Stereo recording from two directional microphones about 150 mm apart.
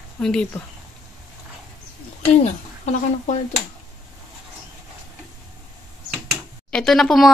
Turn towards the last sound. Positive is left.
turn(degrees=0)  # may be behind; listen again after turning